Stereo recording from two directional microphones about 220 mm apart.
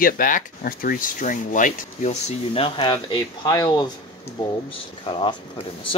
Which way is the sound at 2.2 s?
25° left (ahead or behind).